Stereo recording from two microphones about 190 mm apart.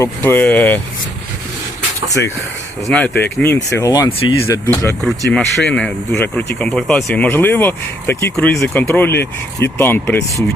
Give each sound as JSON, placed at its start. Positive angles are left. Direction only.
{"t": 0.0, "sound": "speech", "side_deg": 10}
{"t": 2.8, "sound": "speech", "side_deg": 5}
{"t": 5.0, "sound": "speech", "side_deg": 0}